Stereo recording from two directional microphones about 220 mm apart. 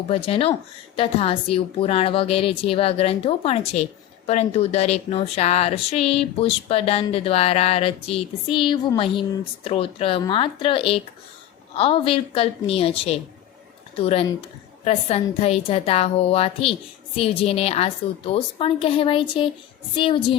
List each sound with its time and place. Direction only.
0.1 s speech: 25° left (ahead or behind)